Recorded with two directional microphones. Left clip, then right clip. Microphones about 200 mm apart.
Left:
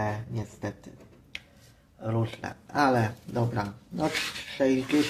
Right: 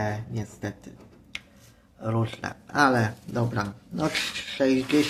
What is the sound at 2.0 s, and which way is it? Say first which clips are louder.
Speech: right 2 dB; 10° right (ahead or behind).